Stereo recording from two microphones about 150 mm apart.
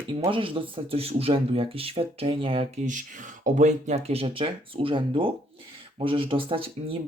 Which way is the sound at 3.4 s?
55° right (ahead or behind).